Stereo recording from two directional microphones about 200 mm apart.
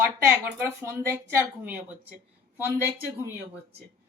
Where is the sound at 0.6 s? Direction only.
15° right (ahead or behind).